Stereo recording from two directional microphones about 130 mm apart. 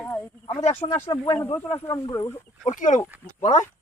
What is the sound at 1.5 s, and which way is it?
Speech, 45° left (ahead or behind).